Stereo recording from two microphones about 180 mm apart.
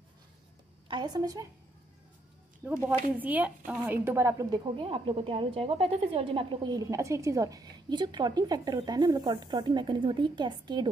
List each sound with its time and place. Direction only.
0.8 s a woman's voice: 25° right (ahead or behind)
2.6 s a woman's voice: 15° right (ahead or behind)
4.7 s a woman's voice: 30° right (ahead or behind)